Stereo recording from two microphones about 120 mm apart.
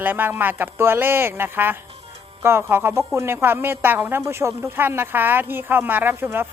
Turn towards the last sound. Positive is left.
turn(degrees=-20)  # may be behind; listen again after turning